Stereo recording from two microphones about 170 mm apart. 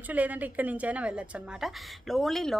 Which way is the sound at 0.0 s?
10° right (ahead or behind).